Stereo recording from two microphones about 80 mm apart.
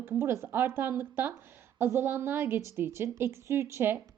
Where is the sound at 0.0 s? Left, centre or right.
Right.